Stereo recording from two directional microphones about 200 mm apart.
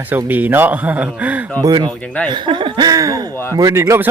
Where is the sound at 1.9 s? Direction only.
5° left (ahead or behind).